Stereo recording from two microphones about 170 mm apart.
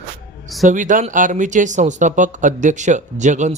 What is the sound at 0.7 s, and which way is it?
Speech, 50° right (ahead or behind).